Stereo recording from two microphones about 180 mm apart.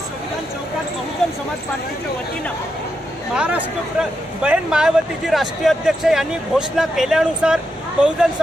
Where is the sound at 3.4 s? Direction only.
10° right (ahead or behind).